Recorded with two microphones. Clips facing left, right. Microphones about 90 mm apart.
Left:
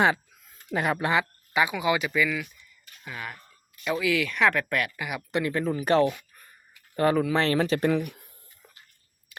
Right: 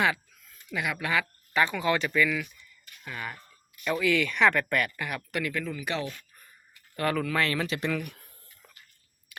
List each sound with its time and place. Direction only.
0.0 s speech: 30° left (ahead or behind)
1.2 s speech: 10° left (ahead or behind)
5.3 s speech: 30° left (ahead or behind); by 6.1 s 45° left (ahead or behind)
6.9 s speech: 25° left (ahead or behind)
7.3 s speech: 30° left (ahead or behind)